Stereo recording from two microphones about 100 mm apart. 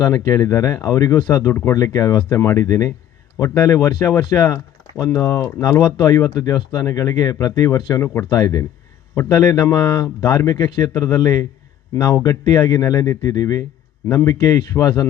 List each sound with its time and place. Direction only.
0.0 s speech: 30° left (ahead or behind)
4.2 s speech: 45° left (ahead or behind); by 8.2 s 25° left (ahead or behind)
8.3 s speech: 40° left (ahead or behind)